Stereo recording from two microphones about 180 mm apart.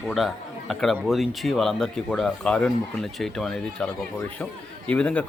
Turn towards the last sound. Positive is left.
turn(degrees=5)  # may be behind; listen again after turning